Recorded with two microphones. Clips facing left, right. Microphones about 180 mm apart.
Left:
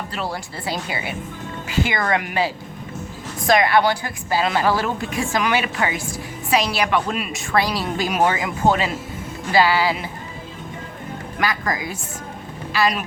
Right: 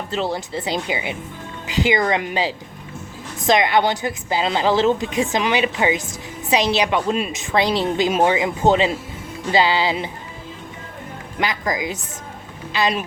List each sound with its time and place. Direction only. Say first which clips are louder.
0.1 s a woman's voice: right 5 dB; 25° right (ahead or behind)
11.3 s a woman's voice: right 1 dB; 20° right (ahead or behind)